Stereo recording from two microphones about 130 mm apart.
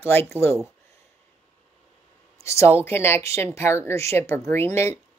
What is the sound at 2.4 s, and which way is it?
A woman's voice, 20° left (ahead or behind).